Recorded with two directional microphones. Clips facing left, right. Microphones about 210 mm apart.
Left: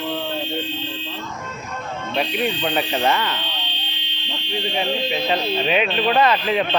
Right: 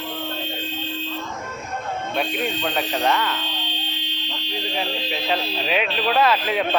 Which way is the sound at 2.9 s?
5° left (ahead or behind).